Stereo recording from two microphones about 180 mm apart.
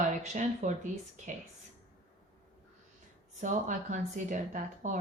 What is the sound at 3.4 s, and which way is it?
Speech, 45° right (ahead or behind).